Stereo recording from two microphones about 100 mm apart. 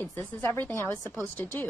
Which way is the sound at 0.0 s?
15° left (ahead or behind).